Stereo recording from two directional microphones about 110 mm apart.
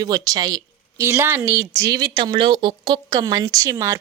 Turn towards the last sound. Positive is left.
turn(degrees=-25)  # may be behind; listen again after turning